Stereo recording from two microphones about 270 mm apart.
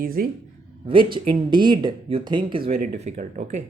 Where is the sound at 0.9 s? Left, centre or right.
Centre.